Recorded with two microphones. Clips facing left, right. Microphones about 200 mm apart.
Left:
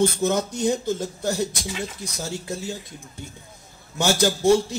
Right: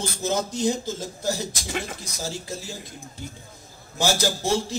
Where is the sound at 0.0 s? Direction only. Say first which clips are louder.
Left 5 dB; 60° left (ahead or behind).